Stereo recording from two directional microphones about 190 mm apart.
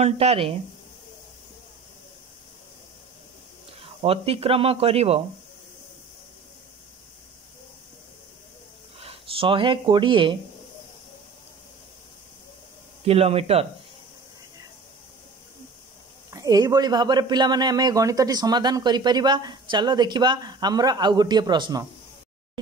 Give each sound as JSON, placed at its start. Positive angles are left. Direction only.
{"t": 0.0, "sound": "speech", "side_deg": -35}
{"t": 3.8, "sound": "speech", "side_deg": -30}
{"t": 9.0, "sound": "speech", "side_deg": -30}
{"t": 13.0, "sound": "speech", "side_deg": -30}
{"t": 16.3, "sound": "a man's voice", "side_deg": -20}